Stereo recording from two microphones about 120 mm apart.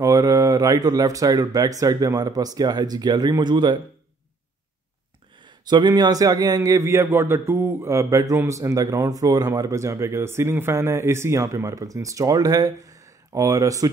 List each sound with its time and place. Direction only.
0.0 s speech: 25° right (ahead or behind)
5.4 s speech: 40° right (ahead or behind)